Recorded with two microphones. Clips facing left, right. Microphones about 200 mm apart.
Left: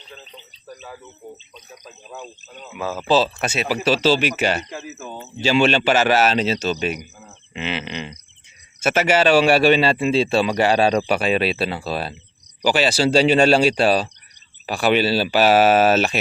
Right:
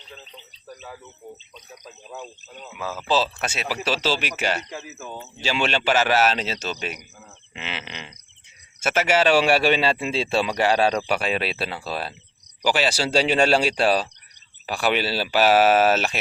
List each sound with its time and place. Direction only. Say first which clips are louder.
1.8 s speech: left 1 dB; 5° right (ahead or behind)
2.7 s speech: left 5 dB; 30° left (ahead or behind)
3.9 s speech: left 7 dB; 5° right (ahead or behind)
9.1 s speech: left 3 dB; 10° right (ahead or behind)
10.8 s speech: left 4 dB; 10° left (ahead or behind)
13.2 s speech: left 3 dB; 10° right (ahead or behind)
15.1 s speech: left 3 dB; 10° left (ahead or behind)